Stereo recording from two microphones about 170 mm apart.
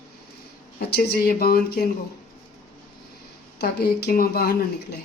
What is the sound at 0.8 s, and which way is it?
Speech, 70° left (ahead or behind).